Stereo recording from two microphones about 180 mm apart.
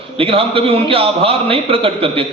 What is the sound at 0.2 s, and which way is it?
A man's voice, 30° right (ahead or behind).